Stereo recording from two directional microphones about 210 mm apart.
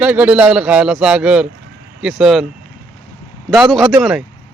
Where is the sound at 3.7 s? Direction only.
Centre (ahead or behind).